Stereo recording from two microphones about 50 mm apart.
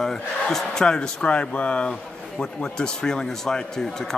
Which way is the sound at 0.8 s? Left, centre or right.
Centre.